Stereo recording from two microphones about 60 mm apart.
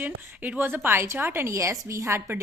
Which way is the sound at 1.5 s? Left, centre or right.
Right.